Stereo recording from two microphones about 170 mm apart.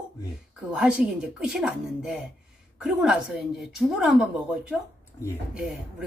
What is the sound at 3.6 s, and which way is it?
A woman's voice, centre (ahead or behind).